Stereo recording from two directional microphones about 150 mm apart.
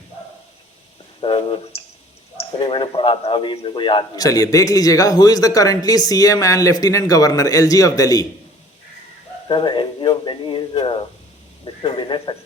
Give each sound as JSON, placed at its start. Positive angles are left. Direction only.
{"t": 1.2, "sound": "speech", "side_deg": 35}
{"t": 9.5, "sound": "speech", "side_deg": 35}